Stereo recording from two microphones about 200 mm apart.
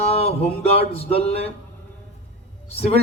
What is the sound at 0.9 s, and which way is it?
Speech, 30° left (ahead or behind).